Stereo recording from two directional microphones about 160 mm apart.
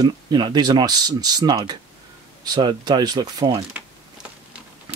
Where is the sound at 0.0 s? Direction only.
25° right (ahead or behind).